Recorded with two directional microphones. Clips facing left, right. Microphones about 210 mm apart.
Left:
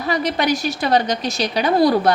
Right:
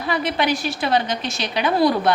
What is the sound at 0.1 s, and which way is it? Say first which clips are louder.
A woman's voice: left 2 dB; 45° left (ahead or behind).